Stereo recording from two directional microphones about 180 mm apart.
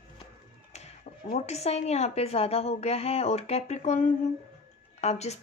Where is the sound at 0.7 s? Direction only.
40° left (ahead or behind).